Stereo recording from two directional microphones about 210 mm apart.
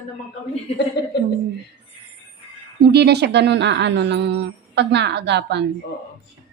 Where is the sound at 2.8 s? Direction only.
50° right (ahead or behind).